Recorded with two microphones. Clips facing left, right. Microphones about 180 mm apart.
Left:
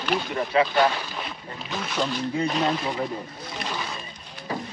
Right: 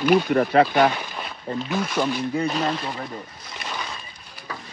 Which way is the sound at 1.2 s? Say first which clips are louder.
Right 7 dB; 5° right (ahead or behind).